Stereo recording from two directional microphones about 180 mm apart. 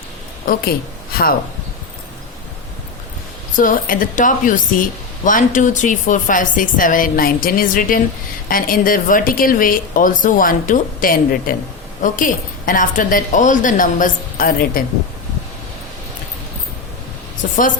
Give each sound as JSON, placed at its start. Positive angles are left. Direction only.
{"t": 0.4, "sound": "a woman's voice", "side_deg": 55}
{"t": 3.5, "sound": "a woman's voice", "side_deg": 50}